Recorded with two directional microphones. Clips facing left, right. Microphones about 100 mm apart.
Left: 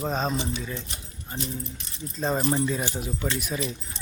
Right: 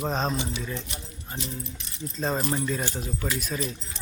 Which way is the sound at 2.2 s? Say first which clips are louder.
Left 3 dB; 5° left (ahead or behind).